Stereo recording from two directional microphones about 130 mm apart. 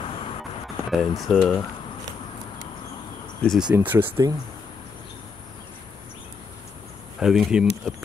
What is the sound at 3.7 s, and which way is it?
Speech, 15° right (ahead or behind).